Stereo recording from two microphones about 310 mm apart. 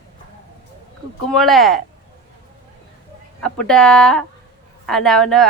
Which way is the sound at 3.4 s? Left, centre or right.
Centre.